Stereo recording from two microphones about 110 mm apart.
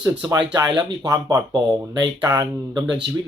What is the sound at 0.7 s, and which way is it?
Speech, 45° right (ahead or behind).